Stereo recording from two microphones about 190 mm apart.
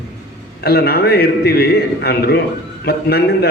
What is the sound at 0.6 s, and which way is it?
A man's voice, 55° left (ahead or behind).